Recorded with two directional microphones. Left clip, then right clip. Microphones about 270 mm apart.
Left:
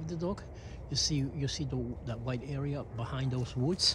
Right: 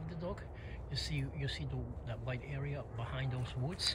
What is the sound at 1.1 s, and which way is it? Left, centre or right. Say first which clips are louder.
Speech: left 6 dB; centre.